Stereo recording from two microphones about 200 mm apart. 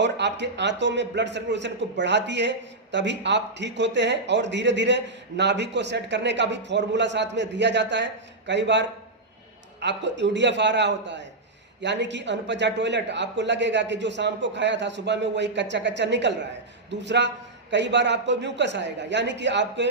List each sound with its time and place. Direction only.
0.0 s a man's voice: 60° right (ahead or behind)